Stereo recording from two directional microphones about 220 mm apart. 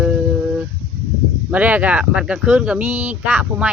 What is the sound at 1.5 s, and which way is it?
Speech, 5° right (ahead or behind).